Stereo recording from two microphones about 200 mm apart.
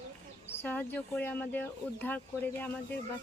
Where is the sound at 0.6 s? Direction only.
10° left (ahead or behind).